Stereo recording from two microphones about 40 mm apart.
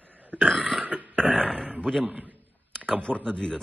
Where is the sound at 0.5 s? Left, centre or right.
Right.